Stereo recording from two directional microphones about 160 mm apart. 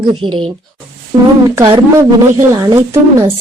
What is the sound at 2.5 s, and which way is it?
Speech, 20° right (ahead or behind).